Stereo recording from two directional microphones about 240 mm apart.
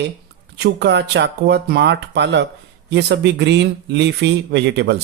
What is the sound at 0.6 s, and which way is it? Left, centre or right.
Speech, right.